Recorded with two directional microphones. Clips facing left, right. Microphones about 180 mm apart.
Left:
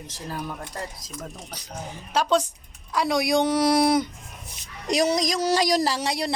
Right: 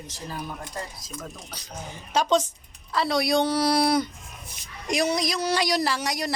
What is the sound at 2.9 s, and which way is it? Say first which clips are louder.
A man's voice: left 1 dB; 15° left (ahead or behind).